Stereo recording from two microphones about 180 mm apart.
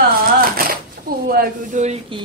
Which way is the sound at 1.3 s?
55° right (ahead or behind).